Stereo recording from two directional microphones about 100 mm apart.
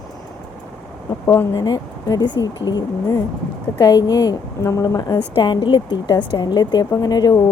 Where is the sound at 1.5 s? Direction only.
35° left (ahead or behind).